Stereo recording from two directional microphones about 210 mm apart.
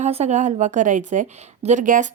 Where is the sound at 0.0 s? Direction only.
30° right (ahead or behind).